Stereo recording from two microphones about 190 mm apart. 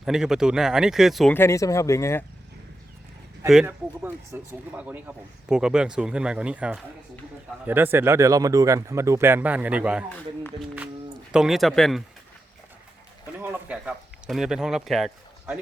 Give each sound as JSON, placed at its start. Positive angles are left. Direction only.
{"t": 0.0, "sound": "speech", "side_deg": 0}
{"t": 1.3, "sound": "speech", "side_deg": 15}
{"t": 3.4, "sound": "speech", "side_deg": -5}
{"t": 11.3, "sound": "speech", "side_deg": -5}
{"t": 13.4, "sound": "speech", "side_deg": -10}